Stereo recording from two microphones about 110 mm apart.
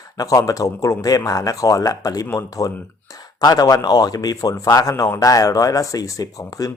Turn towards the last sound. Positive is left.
turn(degrees=35)  # may be behind; listen again after turning